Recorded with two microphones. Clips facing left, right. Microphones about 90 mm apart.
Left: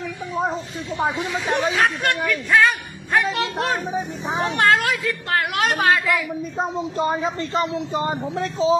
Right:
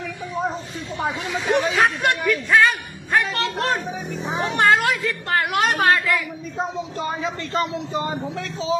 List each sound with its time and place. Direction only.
1.5 s a woman's voice: centre (ahead or behind)
3.2 s music: 5° left (ahead or behind)
4.4 s a woman's voice: centre (ahead or behind)
7.0 s a man's voice: 35° left (ahead or behind)
7.5 s a man's voice: 25° left (ahead or behind)